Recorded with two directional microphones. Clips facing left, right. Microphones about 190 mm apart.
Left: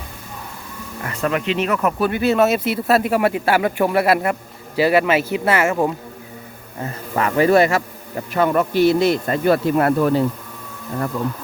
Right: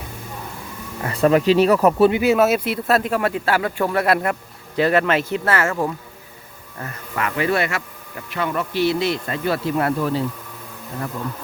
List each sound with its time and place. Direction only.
1.0 s speech: 35° right (ahead or behind)
2.0 s a man's voice: 15° right (ahead or behind); by 5.9 s 20° left (ahead or behind)
7.2 s speech: 35° left (ahead or behind)